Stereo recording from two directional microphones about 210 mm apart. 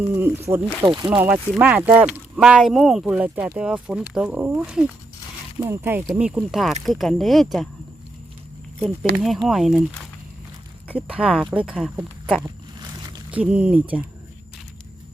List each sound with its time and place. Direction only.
0.2 s speech: 10° right (ahead or behind)
0.8 s speech: 20° right (ahead or behind)
1.1 s speech: 10° right (ahead or behind)
9.1 s speech: centre (ahead or behind)
10.8 s speech: 5° right (ahead or behind)
12.8 s a sound: 20° right (ahead or behind)
13.4 s speech: 5° right (ahead or behind)